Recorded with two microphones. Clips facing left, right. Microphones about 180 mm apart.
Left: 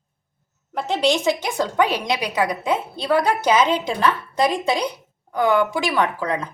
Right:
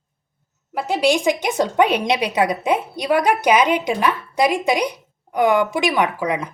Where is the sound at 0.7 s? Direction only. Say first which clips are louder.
Right 2 dB; 10° right (ahead or behind).